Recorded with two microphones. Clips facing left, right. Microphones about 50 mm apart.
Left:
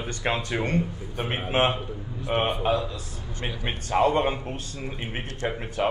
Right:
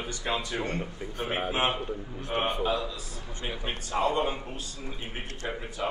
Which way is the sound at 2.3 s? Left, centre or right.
Left.